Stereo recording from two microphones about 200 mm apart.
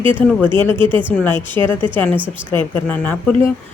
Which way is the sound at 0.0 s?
25° right (ahead or behind).